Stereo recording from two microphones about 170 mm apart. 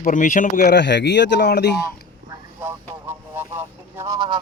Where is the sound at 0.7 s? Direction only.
90° left.